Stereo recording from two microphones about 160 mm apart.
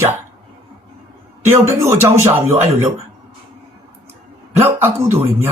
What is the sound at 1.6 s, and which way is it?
Speech, 15° right (ahead or behind).